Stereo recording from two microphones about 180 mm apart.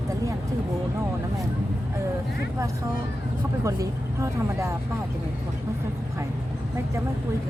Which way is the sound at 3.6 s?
15° right (ahead or behind).